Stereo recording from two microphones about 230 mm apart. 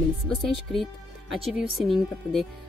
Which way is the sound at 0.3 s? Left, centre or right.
Centre.